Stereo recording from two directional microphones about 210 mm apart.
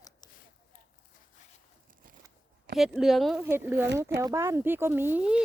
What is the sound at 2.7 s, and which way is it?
Speech, centre (ahead or behind).